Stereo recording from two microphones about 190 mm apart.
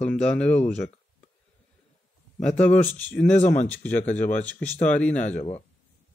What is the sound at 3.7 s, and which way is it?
Speech, 5° left (ahead or behind).